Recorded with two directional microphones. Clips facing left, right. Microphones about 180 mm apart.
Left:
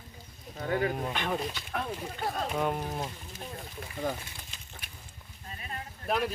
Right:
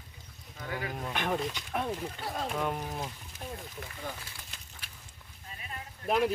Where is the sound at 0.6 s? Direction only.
35° left (ahead or behind).